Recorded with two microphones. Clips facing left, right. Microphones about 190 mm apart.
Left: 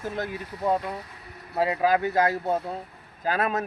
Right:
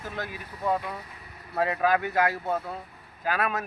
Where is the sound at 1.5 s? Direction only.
20° left (ahead or behind).